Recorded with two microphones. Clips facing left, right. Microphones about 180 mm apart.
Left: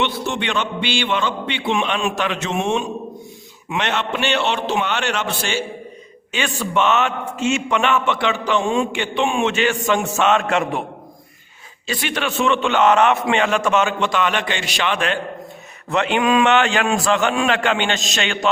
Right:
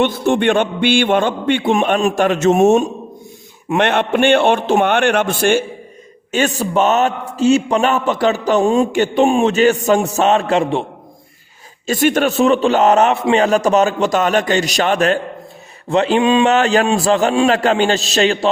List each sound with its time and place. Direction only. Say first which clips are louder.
0.0 s a man's voice: right 8 dB; 50° right (ahead or behind)
6.3 s a man's voice: right 5 dB; 40° right (ahead or behind)
11.9 s a man's voice: right 9 dB; 45° right (ahead or behind)